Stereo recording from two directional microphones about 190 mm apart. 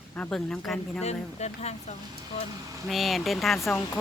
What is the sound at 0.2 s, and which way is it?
Speech, 5° left (ahead or behind).